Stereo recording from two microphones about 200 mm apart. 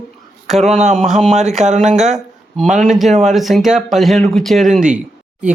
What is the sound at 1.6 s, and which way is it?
Speech, 35° right (ahead or behind).